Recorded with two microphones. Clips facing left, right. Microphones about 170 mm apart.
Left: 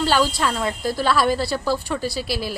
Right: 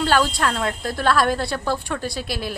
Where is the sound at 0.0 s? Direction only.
5° left (ahead or behind).